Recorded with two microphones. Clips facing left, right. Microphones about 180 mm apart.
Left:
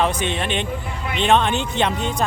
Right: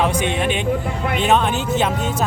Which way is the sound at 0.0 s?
10° right (ahead or behind).